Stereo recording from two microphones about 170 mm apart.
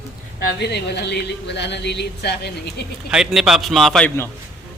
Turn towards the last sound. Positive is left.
turn(degrees=0)  # may be behind; listen again after turning